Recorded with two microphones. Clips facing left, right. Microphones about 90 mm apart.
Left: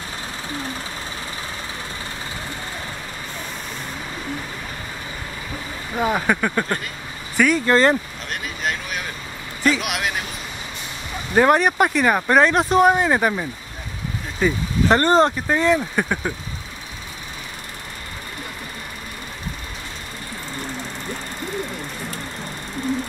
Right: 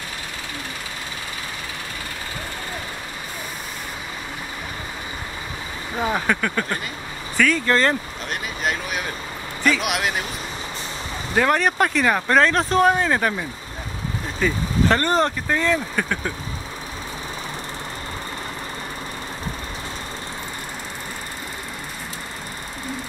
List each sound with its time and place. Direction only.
5.9 s speech: 5° left (ahead or behind)
8.3 s vehicle: centre (ahead or behind)
9.6 s a man's voice: centre (ahead or behind)
11.3 s speech: 20° left (ahead or behind)
15.0 s speech: 25° left (ahead or behind)